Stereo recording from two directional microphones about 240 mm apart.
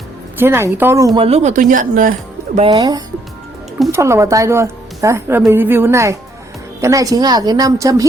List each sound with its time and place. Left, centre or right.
0.3 s speech: centre; by 2.1 s right
2.6 s speech: right